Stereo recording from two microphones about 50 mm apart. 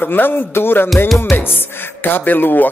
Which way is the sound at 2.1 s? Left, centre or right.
Left.